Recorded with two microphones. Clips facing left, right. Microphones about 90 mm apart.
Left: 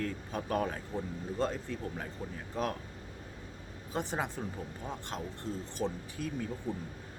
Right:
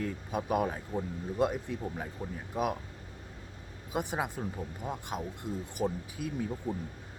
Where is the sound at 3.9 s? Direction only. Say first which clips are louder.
Right 2 dB; 10° right (ahead or behind).